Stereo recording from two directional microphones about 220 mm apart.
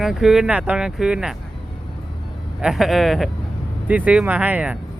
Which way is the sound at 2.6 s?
Centre (ahead or behind).